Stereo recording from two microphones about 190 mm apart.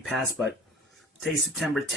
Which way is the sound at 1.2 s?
Centre (ahead or behind).